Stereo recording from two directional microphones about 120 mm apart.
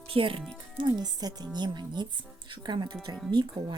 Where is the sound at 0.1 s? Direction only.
45° right (ahead or behind).